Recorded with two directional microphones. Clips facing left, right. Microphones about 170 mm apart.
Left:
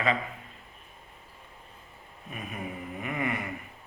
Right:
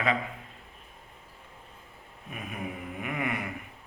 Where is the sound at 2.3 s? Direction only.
5° right (ahead or behind).